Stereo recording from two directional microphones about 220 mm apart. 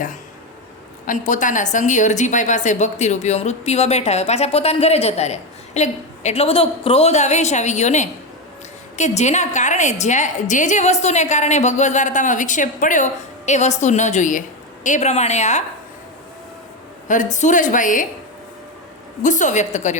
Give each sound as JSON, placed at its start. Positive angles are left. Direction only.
{"t": 1.0, "sound": "a woman's voice", "side_deg": 35}
{"t": 17.3, "sound": "a woman's voice", "side_deg": 35}
{"t": 19.2, "sound": "a woman's voice", "side_deg": 35}